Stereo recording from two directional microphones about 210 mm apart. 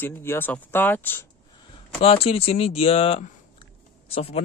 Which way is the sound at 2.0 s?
30° left (ahead or behind).